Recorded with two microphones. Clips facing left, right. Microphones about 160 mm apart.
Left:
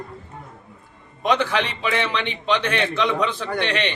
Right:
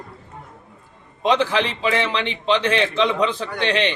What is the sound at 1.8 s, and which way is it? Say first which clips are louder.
Speech: right 2 dB; 30° right (ahead or behind).